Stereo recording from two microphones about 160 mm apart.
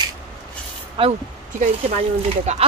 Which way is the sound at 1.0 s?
30° right (ahead or behind).